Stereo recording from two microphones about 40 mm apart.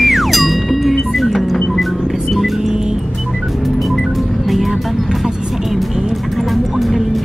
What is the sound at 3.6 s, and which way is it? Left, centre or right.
Music, centre.